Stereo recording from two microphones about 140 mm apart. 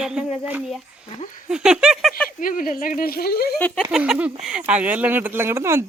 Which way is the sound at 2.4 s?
80° left.